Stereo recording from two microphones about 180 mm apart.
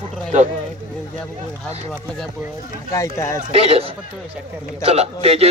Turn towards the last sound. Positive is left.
turn(degrees=-35)  # may be behind; listen again after turning